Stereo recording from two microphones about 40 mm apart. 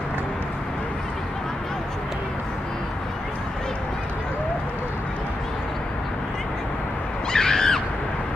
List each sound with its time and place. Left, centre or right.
7.3 s owl: centre